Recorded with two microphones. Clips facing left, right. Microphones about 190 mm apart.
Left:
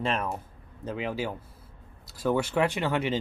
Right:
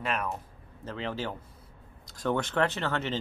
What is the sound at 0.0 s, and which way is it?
Speech, 30° left (ahead or behind).